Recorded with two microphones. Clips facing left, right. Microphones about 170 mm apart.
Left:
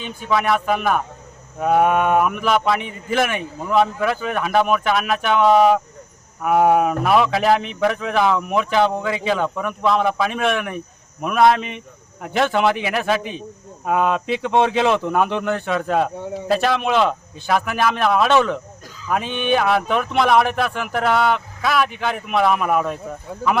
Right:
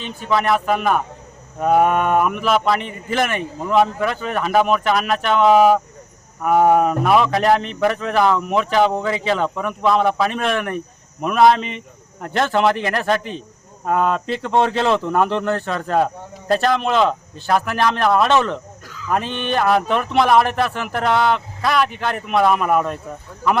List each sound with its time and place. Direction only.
0.0 s speech: centre (ahead or behind)
5.5 s speech: 5° right (ahead or behind)